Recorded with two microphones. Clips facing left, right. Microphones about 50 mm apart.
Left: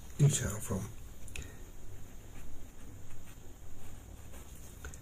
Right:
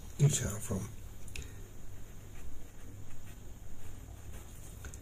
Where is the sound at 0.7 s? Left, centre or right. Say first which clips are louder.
Even; left.